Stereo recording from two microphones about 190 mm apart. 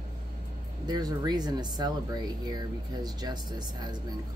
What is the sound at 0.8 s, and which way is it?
Speech, 20° right (ahead or behind).